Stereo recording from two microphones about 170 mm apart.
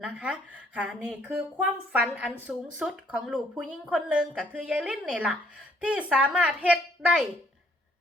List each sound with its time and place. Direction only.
0.0 s a woman's voice: 5° right (ahead or behind)